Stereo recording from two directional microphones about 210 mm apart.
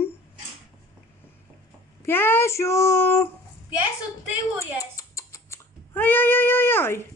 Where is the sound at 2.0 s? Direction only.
10° left (ahead or behind).